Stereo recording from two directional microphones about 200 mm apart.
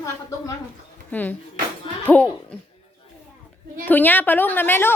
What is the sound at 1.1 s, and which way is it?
A woman's voice, 10° left (ahead or behind).